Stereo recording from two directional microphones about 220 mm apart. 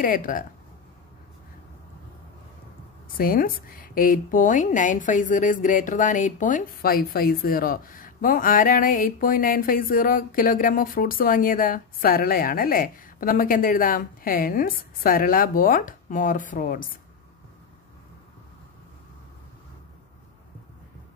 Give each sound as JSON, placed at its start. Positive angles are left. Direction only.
{"t": 0.0, "sound": "a woman's voice", "side_deg": 40}
{"t": 3.2, "sound": "a woman's voice", "side_deg": 40}